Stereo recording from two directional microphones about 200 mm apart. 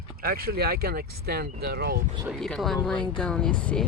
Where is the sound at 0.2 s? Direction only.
50° right (ahead or behind).